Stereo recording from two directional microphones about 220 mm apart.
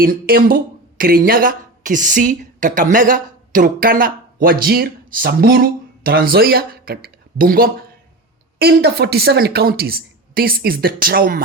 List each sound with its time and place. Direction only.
0.0 s a woman's voice: 40° right (ahead or behind)